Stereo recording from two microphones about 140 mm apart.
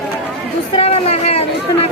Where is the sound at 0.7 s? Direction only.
45° left (ahead or behind).